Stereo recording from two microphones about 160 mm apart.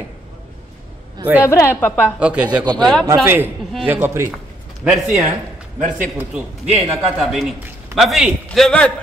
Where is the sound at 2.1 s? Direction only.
5° right (ahead or behind).